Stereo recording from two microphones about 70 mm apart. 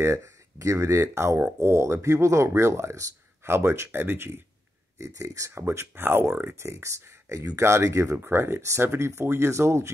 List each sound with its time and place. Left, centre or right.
0.0 s speech: right
4.9 s speech: right
5.5 s speech: right